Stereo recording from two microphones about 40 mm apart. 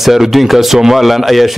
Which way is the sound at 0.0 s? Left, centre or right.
Centre.